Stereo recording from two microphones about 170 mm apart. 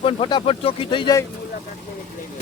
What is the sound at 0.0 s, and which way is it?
Speech, 30° left (ahead or behind).